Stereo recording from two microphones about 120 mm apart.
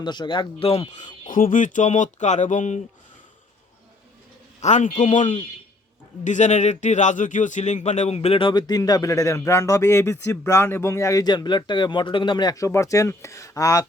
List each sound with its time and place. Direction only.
0.0 s speech: 40° left (ahead or behind)
0.9 s speech: 90° left
4.6 s speech: 85° left; by 13.8 s 30° left (ahead or behind)